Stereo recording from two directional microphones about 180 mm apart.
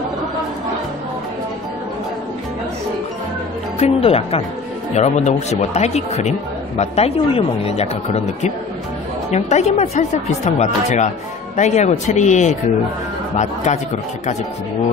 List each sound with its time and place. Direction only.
3.8 s speech: 35° left (ahead or behind)
13.7 s speech: 40° left (ahead or behind)